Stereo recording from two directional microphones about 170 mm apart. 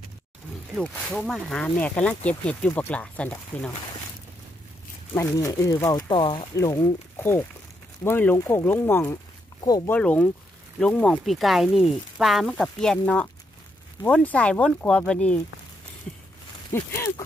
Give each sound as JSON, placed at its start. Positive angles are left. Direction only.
{"t": 0.7, "sound": "speech", "side_deg": 0}
{"t": 5.1, "sound": "speech", "side_deg": 15}
{"t": 9.6, "sound": "speech", "side_deg": 25}
{"t": 9.8, "sound": "speech", "side_deg": 10}
{"t": 16.7, "sound": "speech", "side_deg": 15}